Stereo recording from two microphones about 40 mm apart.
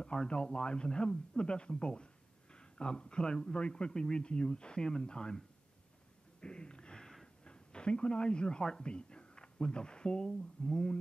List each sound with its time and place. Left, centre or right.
0.0 s speech: left
3.5 s speech: left
6.4 s a sound: left
7.4 s speech: left